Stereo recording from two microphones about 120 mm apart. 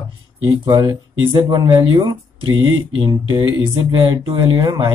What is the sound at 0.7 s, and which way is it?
Speech, 40° right (ahead or behind).